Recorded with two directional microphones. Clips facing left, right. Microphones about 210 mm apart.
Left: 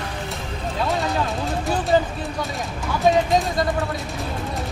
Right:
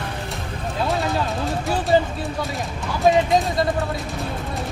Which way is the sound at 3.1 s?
Centre (ahead or behind).